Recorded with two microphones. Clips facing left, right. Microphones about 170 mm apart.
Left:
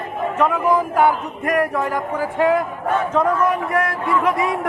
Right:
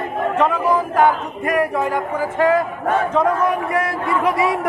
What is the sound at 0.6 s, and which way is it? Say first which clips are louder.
Speech: even; 10° left (ahead or behind).